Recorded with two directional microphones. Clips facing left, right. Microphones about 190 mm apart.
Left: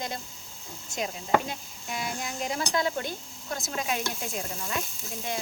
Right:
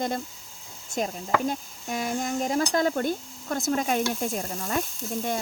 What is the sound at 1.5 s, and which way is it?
Speech, 45° right (ahead or behind).